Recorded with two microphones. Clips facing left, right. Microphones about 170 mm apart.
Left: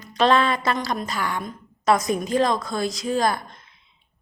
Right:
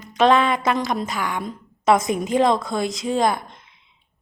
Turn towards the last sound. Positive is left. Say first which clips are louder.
# right 2 dB
turn(degrees=-20)  # may be behind; listen again after turning